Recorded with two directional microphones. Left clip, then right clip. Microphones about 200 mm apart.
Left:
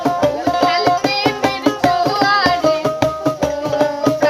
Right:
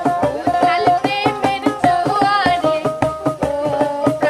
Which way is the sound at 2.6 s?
30° left (ahead or behind).